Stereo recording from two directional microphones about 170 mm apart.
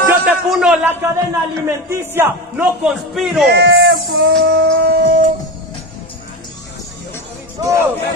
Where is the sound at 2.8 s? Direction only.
Centre (ahead or behind).